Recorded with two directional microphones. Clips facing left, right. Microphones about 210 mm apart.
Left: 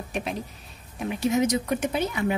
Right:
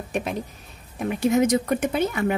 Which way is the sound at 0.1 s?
50° right (ahead or behind).